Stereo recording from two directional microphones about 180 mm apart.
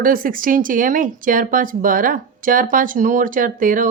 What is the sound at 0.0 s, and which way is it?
A woman's voice, 50° right (ahead or behind).